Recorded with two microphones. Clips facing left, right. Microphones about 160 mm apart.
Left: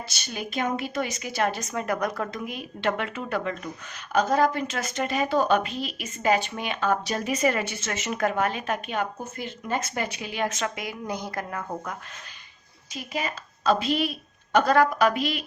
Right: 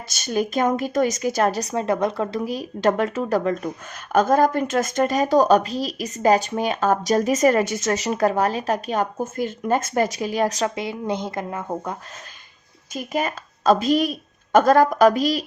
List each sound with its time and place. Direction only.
0.1 s speech: 45° right (ahead or behind); by 11.9 s 25° right (ahead or behind)
12.9 s a woman's voice: 50° right (ahead or behind)